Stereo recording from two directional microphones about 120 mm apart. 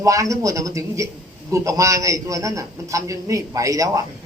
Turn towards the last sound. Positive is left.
turn(degrees=-30)  # may be behind; listen again after turning